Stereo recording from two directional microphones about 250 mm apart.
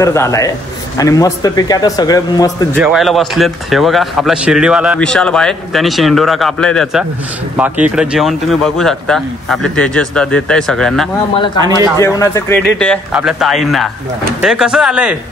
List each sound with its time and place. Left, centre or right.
0.0 s a man's voice: centre
2.7 s a man's voice: centre
11.3 s a man's voice: centre